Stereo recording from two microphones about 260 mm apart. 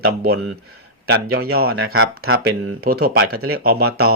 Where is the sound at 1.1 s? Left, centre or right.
Right.